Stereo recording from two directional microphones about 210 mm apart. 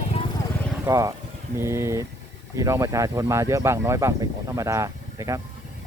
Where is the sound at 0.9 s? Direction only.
15° right (ahead or behind).